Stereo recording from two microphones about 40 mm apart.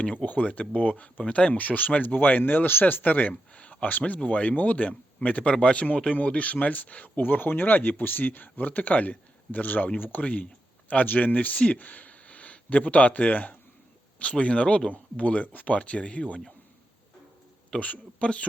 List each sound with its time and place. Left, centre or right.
0.0 s speech: left
0.3 s speech: left
1.5 s speech: left
2.4 s speech: left
2.8 s speech: left
3.5 s a sound: left
3.8 s speech: left
7.2 s speech: left
10.2 s a sound: left
11.0 s speech: left
17.7 s speech: left